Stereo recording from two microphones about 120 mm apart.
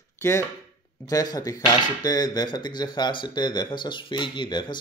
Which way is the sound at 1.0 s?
30° left (ahead or behind).